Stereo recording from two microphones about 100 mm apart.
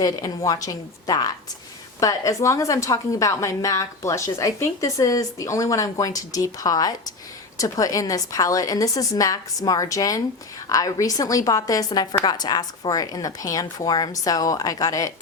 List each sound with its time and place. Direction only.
0.0 s a woman's voice: 40° left (ahead or behind)